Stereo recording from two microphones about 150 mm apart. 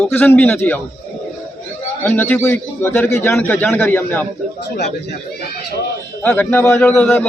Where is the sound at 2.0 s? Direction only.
10° left (ahead or behind).